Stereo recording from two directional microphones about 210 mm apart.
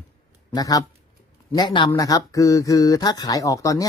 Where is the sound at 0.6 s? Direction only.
15° left (ahead or behind).